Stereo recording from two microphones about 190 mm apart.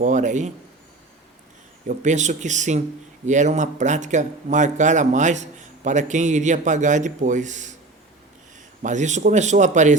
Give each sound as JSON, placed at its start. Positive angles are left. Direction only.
{"t": 0.0, "sound": "speech", "side_deg": -40}
{"t": 1.9, "sound": "speech", "side_deg": -40}
{"t": 8.8, "sound": "speech", "side_deg": -40}